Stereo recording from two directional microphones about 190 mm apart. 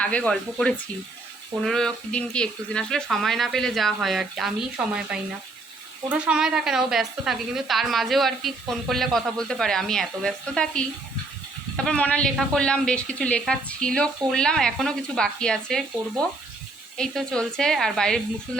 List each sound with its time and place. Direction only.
0.0 s a woman's voice: 5° left (ahead or behind)
11.9 s a woman's voice: 5° left (ahead or behind)